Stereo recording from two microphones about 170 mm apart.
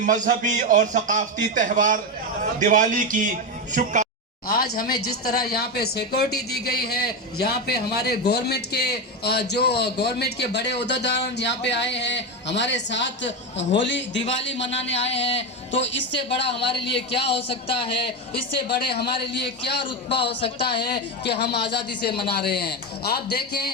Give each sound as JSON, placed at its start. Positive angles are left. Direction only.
{"t": 0.0, "sound": "a man's voice", "side_deg": -50}
{"t": 4.4, "sound": "a man's voice", "side_deg": 65}
{"t": 14.7, "sound": "speech", "side_deg": 35}
{"t": 18.9, "sound": "speech", "side_deg": 70}
{"t": 22.2, "sound": "speech", "side_deg": 70}